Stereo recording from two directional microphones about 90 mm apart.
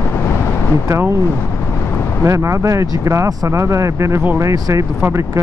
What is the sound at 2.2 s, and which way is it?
Speech, 30° right (ahead or behind).